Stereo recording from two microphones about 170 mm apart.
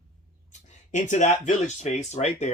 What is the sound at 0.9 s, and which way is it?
Speech, 45° left (ahead or behind).